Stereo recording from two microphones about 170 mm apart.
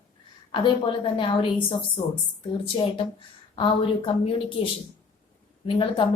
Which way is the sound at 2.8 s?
30° left (ahead or behind).